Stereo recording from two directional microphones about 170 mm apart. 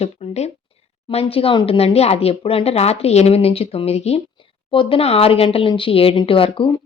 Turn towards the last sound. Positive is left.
turn(degrees=30)  # may be behind; listen again after turning